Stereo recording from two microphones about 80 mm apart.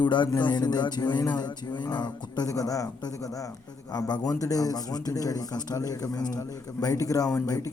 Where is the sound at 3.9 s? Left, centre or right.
Left.